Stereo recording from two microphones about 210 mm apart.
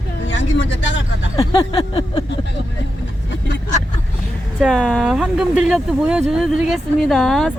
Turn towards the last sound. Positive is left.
turn(degrees=0)  # may be behind; listen again after turning